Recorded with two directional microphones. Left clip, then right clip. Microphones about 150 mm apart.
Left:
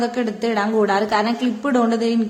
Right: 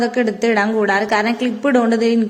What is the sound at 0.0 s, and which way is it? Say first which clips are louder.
A woman's voice: right 5 dB; 10° right (ahead or behind).